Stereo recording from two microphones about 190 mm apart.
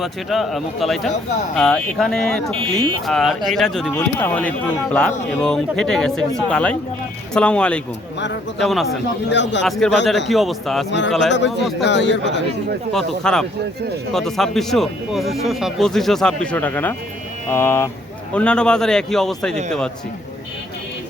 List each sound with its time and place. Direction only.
0.0 s speech: centre (ahead or behind)
9.3 s speech: 70° left (ahead or behind)
9.6 s speech: centre (ahead or behind)
11.3 s speech: 70° left (ahead or behind)
12.9 s speech: centre (ahead or behind)